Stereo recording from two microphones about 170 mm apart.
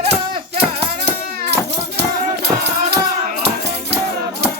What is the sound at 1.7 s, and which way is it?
Music, 75° right (ahead or behind).